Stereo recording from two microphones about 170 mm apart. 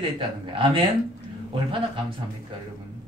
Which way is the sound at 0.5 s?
30° right (ahead or behind).